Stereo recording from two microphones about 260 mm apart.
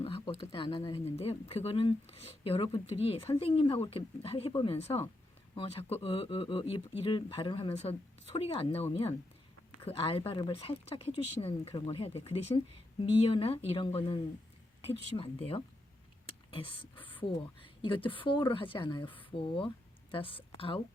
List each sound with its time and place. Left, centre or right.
0.0 s speech: left
16.9 s a sound: centre
17.8 s speech: centre